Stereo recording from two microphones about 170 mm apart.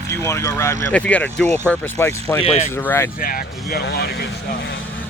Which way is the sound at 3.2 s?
55° left (ahead or behind).